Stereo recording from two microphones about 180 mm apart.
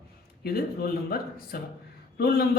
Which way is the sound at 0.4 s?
55° left (ahead or behind).